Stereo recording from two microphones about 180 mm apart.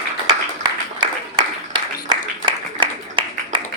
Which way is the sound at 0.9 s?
25° right (ahead or behind).